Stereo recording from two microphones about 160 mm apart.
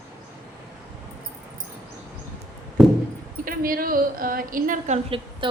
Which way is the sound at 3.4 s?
65° right (ahead or behind).